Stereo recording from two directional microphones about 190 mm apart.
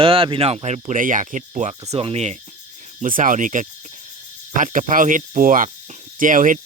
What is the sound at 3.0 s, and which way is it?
Speech, 45° right (ahead or behind).